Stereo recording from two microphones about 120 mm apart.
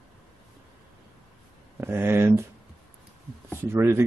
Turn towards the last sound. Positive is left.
turn(degrees=-20)  # may be behind; listen again after turning